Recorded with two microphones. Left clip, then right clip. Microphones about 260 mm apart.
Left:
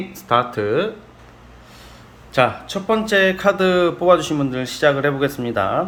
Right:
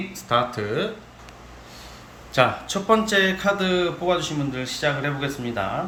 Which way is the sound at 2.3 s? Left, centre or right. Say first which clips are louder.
Left 3 dB; centre.